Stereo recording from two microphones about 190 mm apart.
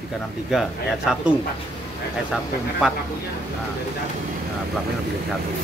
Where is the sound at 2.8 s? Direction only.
5° right (ahead or behind).